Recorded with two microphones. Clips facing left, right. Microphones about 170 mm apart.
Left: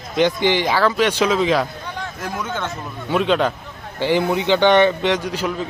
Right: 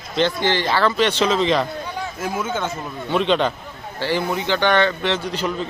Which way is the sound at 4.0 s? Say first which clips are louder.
Left 4 dB; 20° left (ahead or behind).